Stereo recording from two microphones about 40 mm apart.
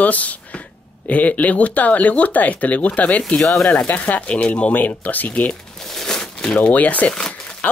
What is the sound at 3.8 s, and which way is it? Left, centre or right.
Speech, left.